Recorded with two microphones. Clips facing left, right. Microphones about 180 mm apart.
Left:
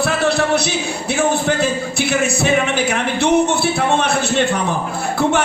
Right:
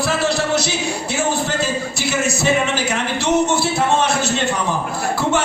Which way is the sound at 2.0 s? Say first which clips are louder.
Left 4 dB; 60° left (ahead or behind).